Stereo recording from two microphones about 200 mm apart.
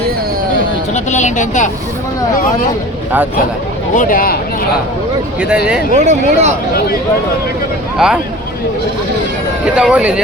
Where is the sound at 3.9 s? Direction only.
45° left (ahead or behind).